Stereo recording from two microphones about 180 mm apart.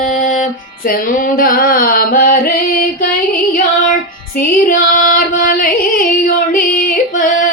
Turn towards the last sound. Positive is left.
turn(degrees=50)  # may be behind; listen again after turning